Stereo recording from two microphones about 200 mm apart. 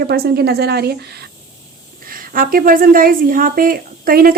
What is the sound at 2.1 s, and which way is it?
Speech, 45° right (ahead or behind).